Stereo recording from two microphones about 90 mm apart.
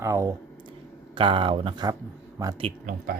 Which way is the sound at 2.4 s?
40° right (ahead or behind).